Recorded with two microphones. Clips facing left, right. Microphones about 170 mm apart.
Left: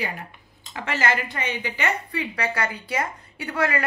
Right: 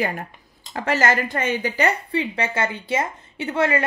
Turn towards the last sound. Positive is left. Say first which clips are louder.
# right 4 dB
turn(degrees=-25)  # may be behind; listen again after turning